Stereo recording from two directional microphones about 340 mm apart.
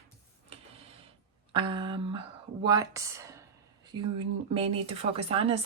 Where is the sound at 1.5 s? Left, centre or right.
Centre.